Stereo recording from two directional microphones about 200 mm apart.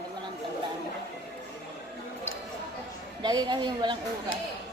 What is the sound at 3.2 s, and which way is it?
Speech, 20° right (ahead or behind).